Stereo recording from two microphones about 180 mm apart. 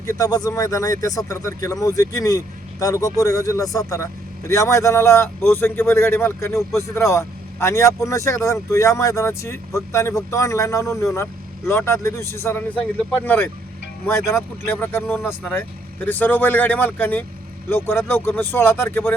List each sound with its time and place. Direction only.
0.0 s speech: 20° left (ahead or behind)